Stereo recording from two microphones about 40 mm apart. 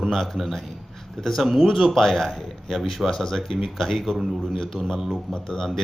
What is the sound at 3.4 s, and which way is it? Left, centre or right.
Speech, centre.